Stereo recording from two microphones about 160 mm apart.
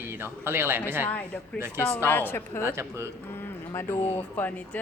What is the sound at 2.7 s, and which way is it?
Speech, 15° right (ahead or behind).